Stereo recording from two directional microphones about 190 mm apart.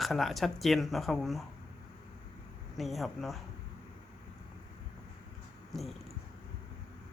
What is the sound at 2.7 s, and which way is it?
Speech, centre (ahead or behind).